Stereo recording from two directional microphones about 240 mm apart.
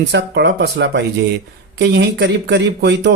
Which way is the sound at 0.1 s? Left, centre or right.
Right.